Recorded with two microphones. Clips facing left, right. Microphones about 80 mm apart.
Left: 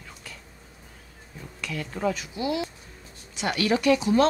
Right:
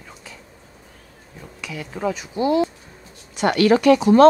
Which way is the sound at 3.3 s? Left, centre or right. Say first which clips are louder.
Right 9 dB; right.